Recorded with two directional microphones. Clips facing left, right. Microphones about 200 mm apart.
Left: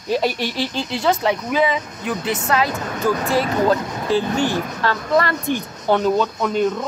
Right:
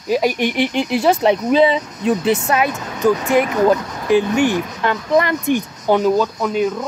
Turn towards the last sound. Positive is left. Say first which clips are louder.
# right 1 dB
turn(degrees=-5)  # may be behind; listen again after turning